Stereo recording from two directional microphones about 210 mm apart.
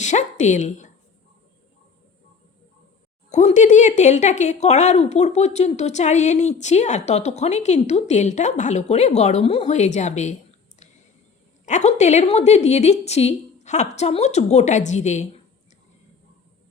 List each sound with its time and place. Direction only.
0.0 s speech: 35° left (ahead or behind)
3.2 s speech: 35° left (ahead or behind)
11.6 s speech: 35° left (ahead or behind)